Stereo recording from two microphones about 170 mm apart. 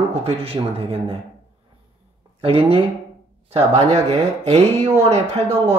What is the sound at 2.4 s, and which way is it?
Speech, 35° right (ahead or behind).